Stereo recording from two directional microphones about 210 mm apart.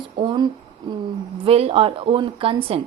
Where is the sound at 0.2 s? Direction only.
25° right (ahead or behind).